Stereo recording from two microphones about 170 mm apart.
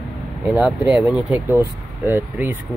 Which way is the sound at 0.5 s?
5° right (ahead or behind).